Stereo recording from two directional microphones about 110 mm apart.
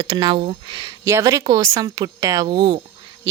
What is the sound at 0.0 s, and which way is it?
Speech, 50° right (ahead or behind).